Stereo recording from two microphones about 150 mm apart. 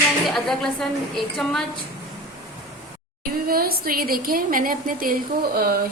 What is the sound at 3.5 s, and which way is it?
A woman's voice, 80° right.